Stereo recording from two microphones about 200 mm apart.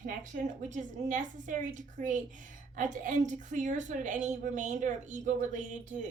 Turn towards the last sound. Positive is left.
turn(degrees=-40)  # may be behind; listen again after turning